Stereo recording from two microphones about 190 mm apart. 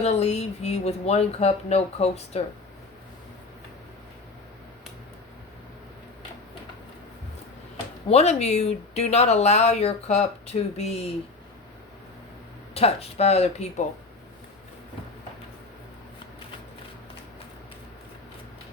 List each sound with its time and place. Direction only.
0.0 s speech: 35° left (ahead or behind)
8.0 s speech: 35° left (ahead or behind)
12.7 s speech: 30° left (ahead or behind)